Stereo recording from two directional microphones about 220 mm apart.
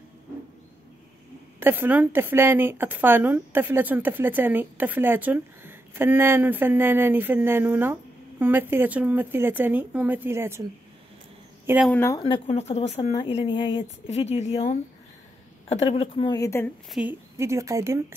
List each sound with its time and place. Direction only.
1.6 s speech: 10° right (ahead or behind)
11.6 s speech: 5° right (ahead or behind)
11.9 s speech: 10° left (ahead or behind)
12.2 s a woman's voice: 25° left (ahead or behind)
16.9 s speech: 5° right (ahead or behind)